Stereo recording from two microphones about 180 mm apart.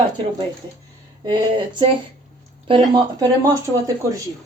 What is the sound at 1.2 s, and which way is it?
Speech, 25° right (ahead or behind).